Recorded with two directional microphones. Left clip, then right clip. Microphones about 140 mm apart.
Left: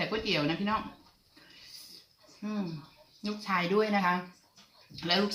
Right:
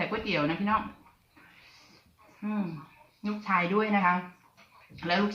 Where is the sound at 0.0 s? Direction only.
15° left (ahead or behind).